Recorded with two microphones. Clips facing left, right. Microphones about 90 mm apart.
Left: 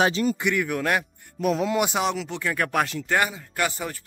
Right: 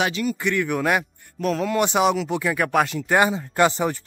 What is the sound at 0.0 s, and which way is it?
Speech, 35° left (ahead or behind).